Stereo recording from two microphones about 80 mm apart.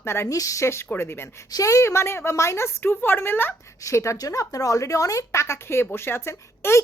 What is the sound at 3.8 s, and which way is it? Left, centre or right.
Speech, left.